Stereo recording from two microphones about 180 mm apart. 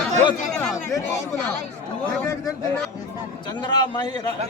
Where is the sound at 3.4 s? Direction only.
25° left (ahead or behind).